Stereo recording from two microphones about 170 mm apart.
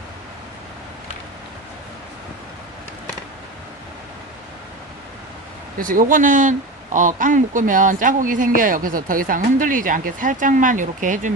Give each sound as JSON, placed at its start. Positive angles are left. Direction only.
{"t": 5.8, "sound": "speech", "side_deg": -55}